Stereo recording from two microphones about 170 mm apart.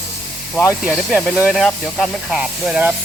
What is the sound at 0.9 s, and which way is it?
Speech, centre (ahead or behind).